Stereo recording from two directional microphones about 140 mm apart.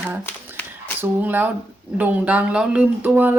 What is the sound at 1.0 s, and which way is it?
A woman's voice, 15° right (ahead or behind).